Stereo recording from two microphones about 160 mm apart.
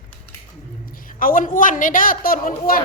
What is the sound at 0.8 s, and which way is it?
A man's voice, 60° left (ahead or behind).